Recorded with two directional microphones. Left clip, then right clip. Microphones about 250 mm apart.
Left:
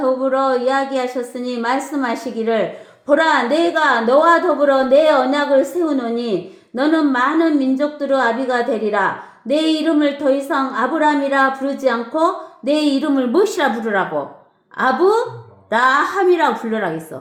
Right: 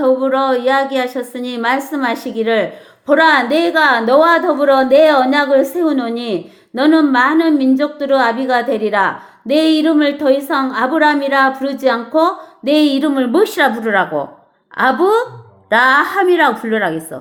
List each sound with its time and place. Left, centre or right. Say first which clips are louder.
0.0 s a woman's voice: right 3 dB; right